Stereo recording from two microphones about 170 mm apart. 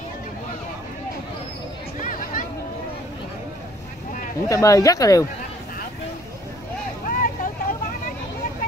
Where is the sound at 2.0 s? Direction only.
50° left (ahead or behind).